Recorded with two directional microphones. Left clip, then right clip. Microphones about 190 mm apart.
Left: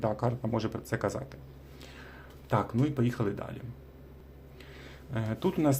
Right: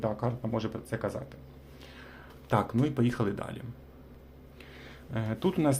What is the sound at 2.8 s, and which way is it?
Speech, 5° right (ahead or behind).